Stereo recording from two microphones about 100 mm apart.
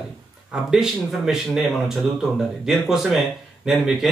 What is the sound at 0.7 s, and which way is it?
Speech, 5° right (ahead or behind).